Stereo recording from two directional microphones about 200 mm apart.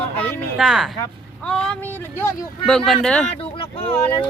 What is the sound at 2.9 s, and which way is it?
Speech, 5° left (ahead or behind).